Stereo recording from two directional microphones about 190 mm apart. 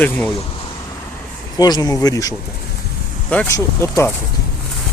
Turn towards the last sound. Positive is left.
turn(degrees=15)  # may be behind; listen again after turning